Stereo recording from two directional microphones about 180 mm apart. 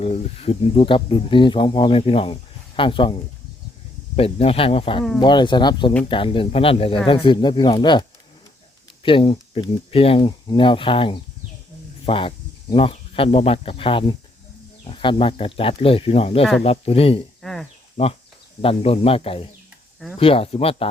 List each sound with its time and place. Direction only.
0.0 s speech: 35° left (ahead or behind)
9.0 s speech: 30° left (ahead or behind)
16.4 s speech: centre (ahead or behind)
16.6 s speech: 35° left (ahead or behind)
17.4 s speech: centre (ahead or behind)
17.9 s speech: 35° left (ahead or behind)